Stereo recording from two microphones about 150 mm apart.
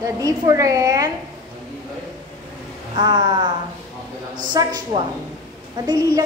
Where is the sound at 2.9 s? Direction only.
30° right (ahead or behind).